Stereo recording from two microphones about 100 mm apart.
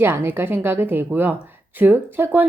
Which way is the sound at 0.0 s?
20° right (ahead or behind).